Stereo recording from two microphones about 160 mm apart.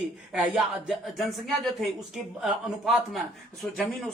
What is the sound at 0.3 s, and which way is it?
Speech, 5° right (ahead or behind).